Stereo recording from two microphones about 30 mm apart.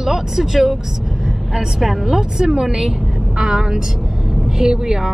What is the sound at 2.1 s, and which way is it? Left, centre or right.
A woman's voice, centre.